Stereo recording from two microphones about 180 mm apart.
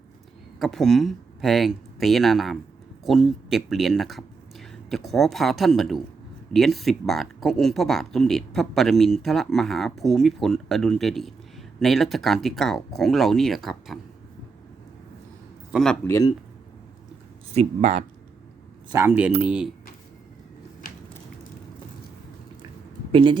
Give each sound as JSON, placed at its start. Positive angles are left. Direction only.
{"t": 0.6, "sound": "speech", "side_deg": 0}
{"t": 15.7, "sound": "a man's voice", "side_deg": 5}
{"t": 17.5, "sound": "speech", "side_deg": -40}
{"t": 18.9, "sound": "speech", "side_deg": -15}
{"t": 23.1, "sound": "speech", "side_deg": -25}